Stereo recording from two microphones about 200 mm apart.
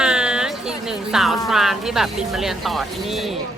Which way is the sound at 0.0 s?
5° right (ahead or behind).